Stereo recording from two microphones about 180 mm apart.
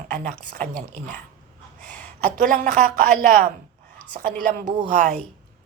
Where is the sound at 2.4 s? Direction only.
45° right (ahead or behind).